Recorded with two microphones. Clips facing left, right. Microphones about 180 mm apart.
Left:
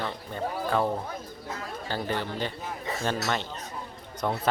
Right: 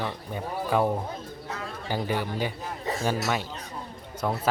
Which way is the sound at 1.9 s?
10° right (ahead or behind).